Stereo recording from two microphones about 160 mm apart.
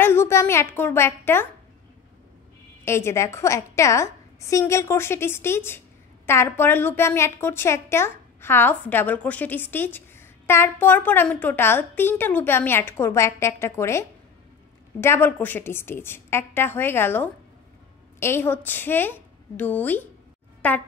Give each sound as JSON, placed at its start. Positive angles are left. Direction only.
{"t": 0.0, "sound": "a woman's voice", "side_deg": 15}
{"t": 2.8, "sound": "a woman's voice", "side_deg": 15}